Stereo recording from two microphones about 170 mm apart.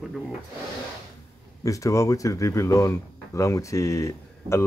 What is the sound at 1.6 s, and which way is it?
Speech, 20° left (ahead or behind).